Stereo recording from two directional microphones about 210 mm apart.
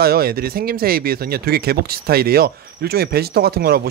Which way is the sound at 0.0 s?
45° right (ahead or behind).